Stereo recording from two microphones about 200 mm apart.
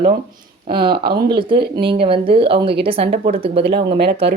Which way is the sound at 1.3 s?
25° right (ahead or behind).